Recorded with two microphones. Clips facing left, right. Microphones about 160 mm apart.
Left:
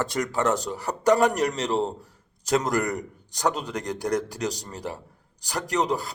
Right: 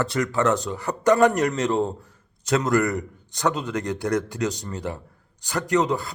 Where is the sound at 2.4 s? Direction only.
35° left (ahead or behind).